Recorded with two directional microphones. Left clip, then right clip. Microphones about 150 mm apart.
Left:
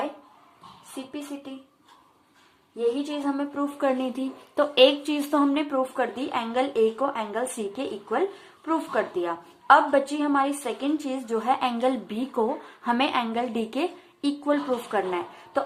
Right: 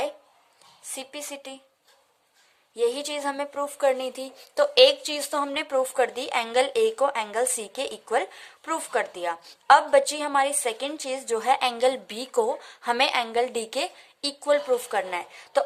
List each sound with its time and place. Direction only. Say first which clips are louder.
0.9 s speech: even; 40° right (ahead or behind)
2.7 s speech: right 1 dB; 45° right (ahead or behind)